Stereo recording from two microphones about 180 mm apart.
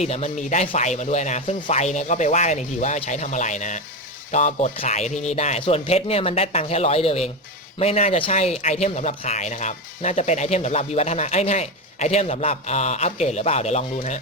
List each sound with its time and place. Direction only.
0.0 s speech: 35° left (ahead or behind)